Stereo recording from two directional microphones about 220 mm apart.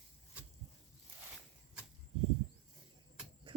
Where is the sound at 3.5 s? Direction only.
25° right (ahead or behind).